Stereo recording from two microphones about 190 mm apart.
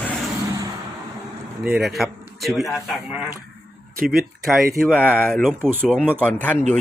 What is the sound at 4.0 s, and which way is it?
Speech, 50° right (ahead or behind).